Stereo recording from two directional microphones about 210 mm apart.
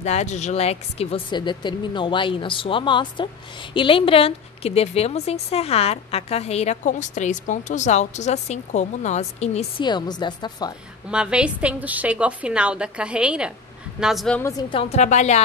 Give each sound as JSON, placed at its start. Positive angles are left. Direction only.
{"t": 0.0, "sound": "a woman's voice", "side_deg": 30}
{"t": 11.1, "sound": "a woman's voice", "side_deg": -5}
{"t": 14.6, "sound": "a woman's voice", "side_deg": 25}